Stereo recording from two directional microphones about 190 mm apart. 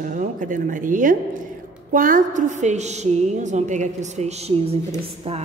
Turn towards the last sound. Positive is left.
turn(degrees=-35)  # may be behind; listen again after turning